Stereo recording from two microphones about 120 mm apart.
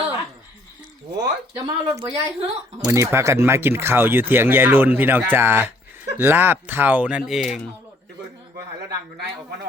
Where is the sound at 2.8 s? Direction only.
25° right (ahead or behind); by 7.6 s centre (ahead or behind).